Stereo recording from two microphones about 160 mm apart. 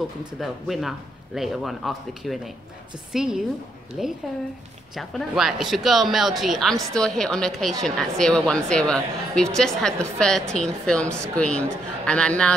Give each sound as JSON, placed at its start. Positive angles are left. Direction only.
{"t": 0.4, "sound": "a woman's voice", "side_deg": 0}